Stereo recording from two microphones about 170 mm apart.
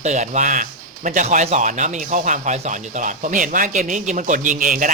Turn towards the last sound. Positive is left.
turn(degrees=-50)  # may be behind; listen again after turning